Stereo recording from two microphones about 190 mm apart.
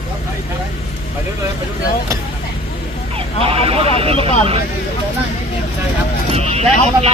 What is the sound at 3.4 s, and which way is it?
Speech, 30° right (ahead or behind).